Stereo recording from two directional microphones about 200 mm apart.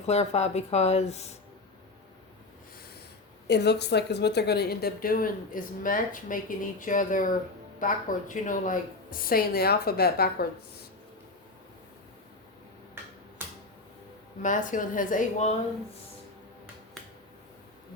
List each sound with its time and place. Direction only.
0.0 s speech: 35° left (ahead or behind)
3.4 s a woman's voice: 55° left (ahead or behind)
14.4 s speech: 40° left (ahead or behind)